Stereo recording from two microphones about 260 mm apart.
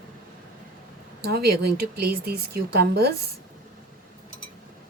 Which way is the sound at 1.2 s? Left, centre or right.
Right.